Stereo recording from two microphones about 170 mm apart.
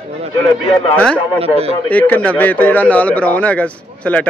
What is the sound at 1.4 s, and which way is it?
Speech, 35° right (ahead or behind).